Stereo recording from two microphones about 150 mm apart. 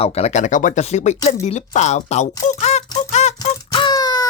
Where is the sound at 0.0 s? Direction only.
45° left (ahead or behind).